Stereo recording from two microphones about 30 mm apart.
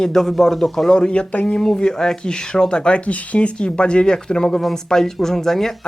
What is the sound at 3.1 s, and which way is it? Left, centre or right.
Speech, left.